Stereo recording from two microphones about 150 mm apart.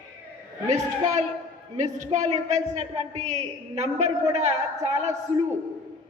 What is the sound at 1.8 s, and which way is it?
Speech, 50° right (ahead or behind).